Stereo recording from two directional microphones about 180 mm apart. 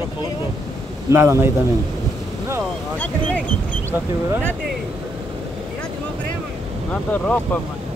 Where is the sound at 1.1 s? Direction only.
15° right (ahead or behind).